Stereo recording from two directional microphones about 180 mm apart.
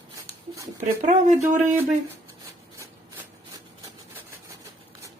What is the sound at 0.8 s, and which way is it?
Speech, 45° right (ahead or behind).